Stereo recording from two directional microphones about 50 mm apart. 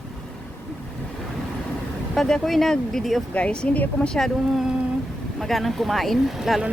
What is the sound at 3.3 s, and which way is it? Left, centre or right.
Speech, left.